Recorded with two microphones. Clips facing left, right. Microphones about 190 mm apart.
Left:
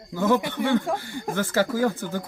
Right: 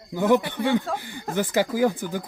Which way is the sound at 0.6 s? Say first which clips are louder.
Even; 15° left (ahead or behind).